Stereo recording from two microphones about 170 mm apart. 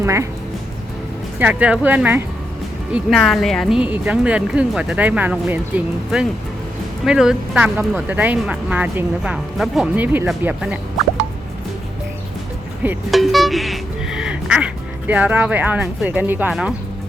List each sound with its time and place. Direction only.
0.0 s speech: 15° right (ahead or behind)
1.4 s speech: 10° right (ahead or behind)
2.9 s speech: centre (ahead or behind)
13.1 s quack: centre (ahead or behind)
16.5 s speech: 5° right (ahead or behind)